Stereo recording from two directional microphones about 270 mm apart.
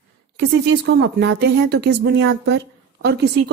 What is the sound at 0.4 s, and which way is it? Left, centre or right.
A woman's voice, right.